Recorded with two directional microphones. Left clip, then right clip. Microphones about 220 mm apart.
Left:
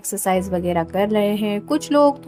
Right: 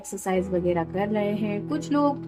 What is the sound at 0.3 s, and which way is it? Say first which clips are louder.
A woman's voice: left 4 dB; 50° left (ahead or behind).